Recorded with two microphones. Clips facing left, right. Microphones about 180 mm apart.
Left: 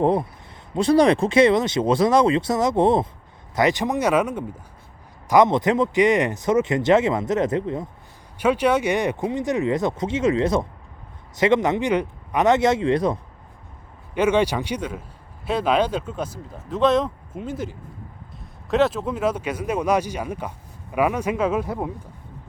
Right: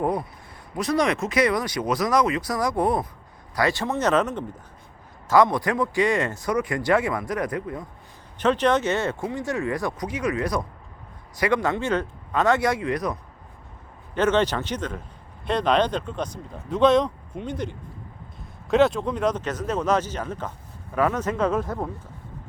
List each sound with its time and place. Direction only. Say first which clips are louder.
0.0 s speech: left 5 dB; 25° left (ahead or behind); by 4.4 s 10° left (ahead or behind)
5.3 s speech: left 3 dB; 20° left (ahead or behind)
8.4 s speech: left 1 dB; 10° left (ahead or behind); by 13.1 s 25° left (ahead or behind)
14.2 s speech: left 2 dB; 10° left (ahead or behind)